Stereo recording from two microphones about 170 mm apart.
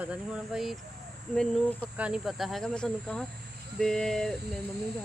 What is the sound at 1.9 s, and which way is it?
Speech, 5° right (ahead or behind).